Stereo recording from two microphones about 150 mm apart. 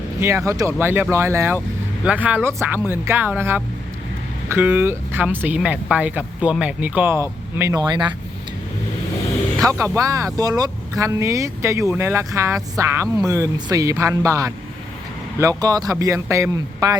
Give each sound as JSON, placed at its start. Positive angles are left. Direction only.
{"t": 0.2, "sound": "speech", "side_deg": -20}
{"t": 9.6, "sound": "speech", "side_deg": -20}